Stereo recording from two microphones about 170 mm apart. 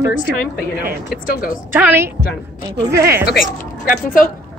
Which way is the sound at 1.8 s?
10° right (ahead or behind).